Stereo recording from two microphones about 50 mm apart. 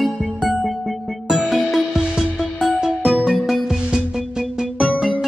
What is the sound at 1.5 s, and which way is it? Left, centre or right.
Music, centre.